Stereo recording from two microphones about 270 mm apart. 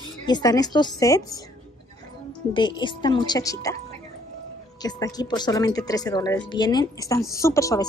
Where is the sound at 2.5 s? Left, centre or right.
Centre.